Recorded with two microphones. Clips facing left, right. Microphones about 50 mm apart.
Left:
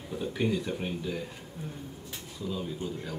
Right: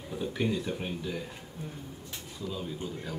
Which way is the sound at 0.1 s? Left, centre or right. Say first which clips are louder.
Left 1 dB; centre.